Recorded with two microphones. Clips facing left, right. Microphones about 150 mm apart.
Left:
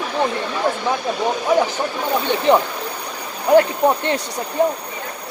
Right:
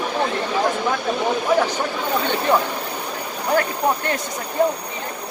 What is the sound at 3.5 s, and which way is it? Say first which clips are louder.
Speech: left 7 dB; 25° left (ahead or behind).